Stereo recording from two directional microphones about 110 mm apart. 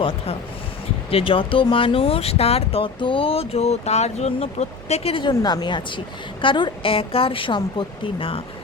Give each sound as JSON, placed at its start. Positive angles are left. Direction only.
{"t": 1.1, "sound": "speech", "side_deg": 55}
{"t": 5.3, "sound": "a woman's voice", "side_deg": 35}